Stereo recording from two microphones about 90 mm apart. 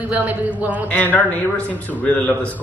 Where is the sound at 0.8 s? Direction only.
20° left (ahead or behind).